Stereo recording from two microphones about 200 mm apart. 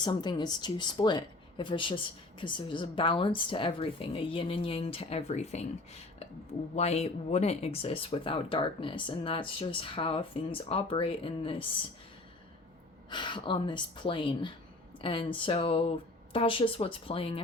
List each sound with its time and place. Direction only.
0.0 s speech: 20° left (ahead or behind)
13.1 s speech: 25° left (ahead or behind)